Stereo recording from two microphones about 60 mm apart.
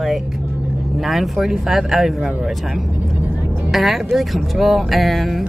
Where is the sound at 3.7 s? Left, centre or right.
Centre.